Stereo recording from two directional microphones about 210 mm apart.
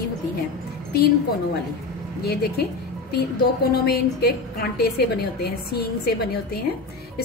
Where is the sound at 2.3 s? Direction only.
45° left (ahead or behind).